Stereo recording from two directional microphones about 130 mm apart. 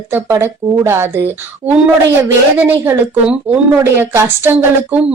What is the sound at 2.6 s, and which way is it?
A woman's voice, 15° right (ahead or behind).